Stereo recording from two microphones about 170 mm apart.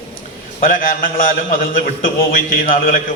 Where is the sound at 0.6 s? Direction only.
55° left (ahead or behind).